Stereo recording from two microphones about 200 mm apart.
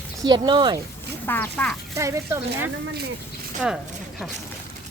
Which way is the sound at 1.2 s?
10° left (ahead or behind).